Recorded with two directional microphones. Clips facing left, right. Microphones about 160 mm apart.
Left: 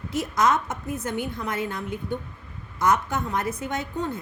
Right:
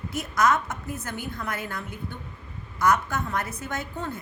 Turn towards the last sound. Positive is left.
turn(degrees=20)  # may be behind; listen again after turning